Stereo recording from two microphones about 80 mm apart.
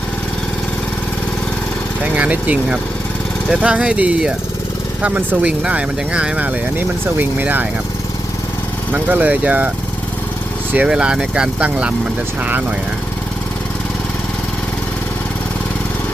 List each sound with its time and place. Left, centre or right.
2.1 s speech: centre
8.9 s speech: right
10.8 s speech: centre